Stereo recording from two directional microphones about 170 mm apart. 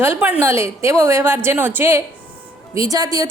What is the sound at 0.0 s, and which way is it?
A woman's voice, 10° right (ahead or behind).